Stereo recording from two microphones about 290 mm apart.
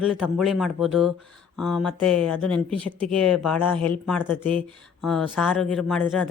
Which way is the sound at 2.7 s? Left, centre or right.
Centre.